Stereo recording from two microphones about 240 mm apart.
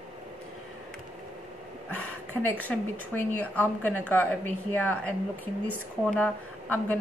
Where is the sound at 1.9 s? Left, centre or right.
Left.